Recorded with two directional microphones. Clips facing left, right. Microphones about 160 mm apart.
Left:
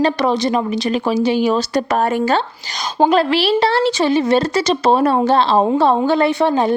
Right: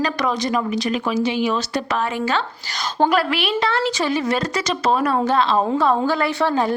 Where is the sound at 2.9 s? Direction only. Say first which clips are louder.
Left 5 dB; 25° left (ahead or behind).